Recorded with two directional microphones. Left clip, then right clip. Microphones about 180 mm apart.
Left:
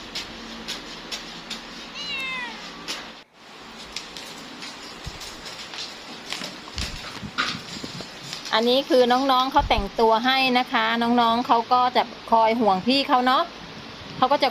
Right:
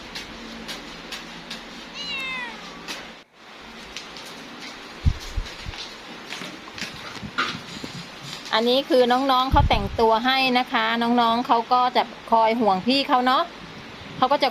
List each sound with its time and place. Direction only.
2.0 s cat: centre (ahead or behind)
8.4 s a woman's voice: centre (ahead or behind)